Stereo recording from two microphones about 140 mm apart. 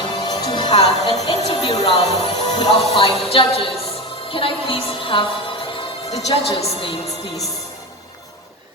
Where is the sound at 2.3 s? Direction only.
30° left (ahead or behind).